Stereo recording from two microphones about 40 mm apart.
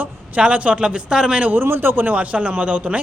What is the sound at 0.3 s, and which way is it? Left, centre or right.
A man's voice, right.